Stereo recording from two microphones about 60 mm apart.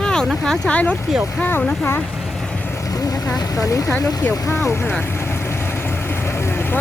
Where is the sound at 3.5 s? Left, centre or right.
Left.